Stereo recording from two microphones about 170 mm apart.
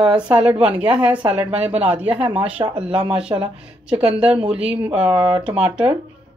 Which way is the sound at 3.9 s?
5° right (ahead or behind).